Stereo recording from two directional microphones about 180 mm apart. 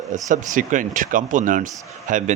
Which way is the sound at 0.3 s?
45° right (ahead or behind).